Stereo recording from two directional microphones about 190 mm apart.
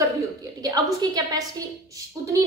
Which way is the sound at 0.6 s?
20° right (ahead or behind).